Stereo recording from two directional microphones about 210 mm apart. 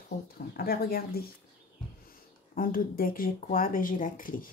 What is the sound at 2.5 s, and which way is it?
A woman's voice, 45° left (ahead or behind).